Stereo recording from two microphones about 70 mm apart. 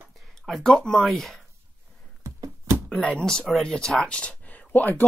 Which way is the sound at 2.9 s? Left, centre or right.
Left.